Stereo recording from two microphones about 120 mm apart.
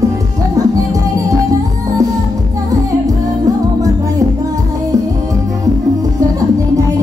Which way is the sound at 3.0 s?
30° right (ahead or behind).